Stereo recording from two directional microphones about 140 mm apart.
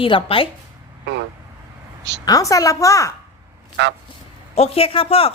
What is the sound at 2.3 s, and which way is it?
Speech, 25° left (ahead or behind).